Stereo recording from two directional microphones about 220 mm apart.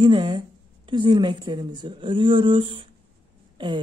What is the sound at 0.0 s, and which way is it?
Speech, 20° right (ahead or behind).